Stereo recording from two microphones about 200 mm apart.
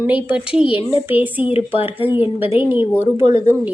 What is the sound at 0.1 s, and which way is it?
A woman's voice, 5° right (ahead or behind).